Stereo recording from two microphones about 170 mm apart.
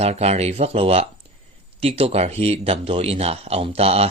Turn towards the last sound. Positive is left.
turn(degrees=-35)  # may be behind; listen again after turning